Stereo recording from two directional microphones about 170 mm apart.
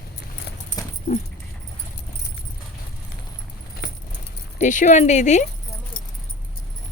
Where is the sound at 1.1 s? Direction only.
45° left (ahead or behind).